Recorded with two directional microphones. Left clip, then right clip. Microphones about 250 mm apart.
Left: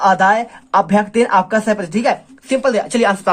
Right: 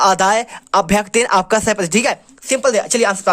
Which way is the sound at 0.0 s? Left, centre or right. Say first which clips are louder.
Left 1 dB; right.